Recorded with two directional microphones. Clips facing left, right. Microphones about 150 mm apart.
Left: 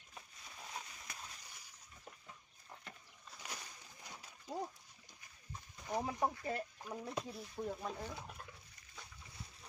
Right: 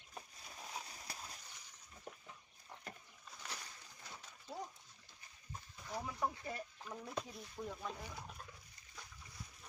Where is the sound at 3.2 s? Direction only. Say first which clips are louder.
Left 1 dB; 10° left (ahead or behind).